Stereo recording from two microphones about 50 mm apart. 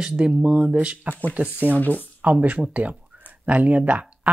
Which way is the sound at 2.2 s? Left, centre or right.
Right.